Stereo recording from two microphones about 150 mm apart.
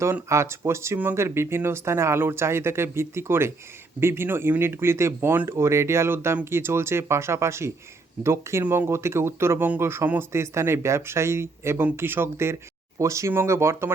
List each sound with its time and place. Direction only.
0.0 s speech: 15° right (ahead or behind)